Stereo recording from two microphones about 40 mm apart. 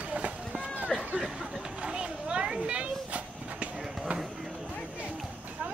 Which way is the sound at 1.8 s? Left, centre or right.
Right.